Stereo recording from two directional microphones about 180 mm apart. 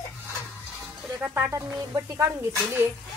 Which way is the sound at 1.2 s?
15° right (ahead or behind).